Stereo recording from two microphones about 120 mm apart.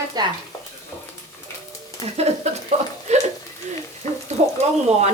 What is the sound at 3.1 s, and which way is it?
Chuckle, 70° right (ahead or behind).